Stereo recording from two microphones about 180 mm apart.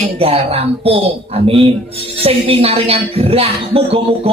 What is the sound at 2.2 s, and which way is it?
Speech, 30° right (ahead or behind).